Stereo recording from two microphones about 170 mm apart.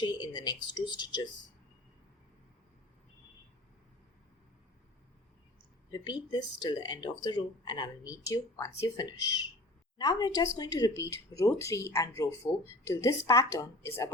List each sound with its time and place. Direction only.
0.0 s speech: 25° left (ahead or behind)
5.9 s speech: 25° left (ahead or behind)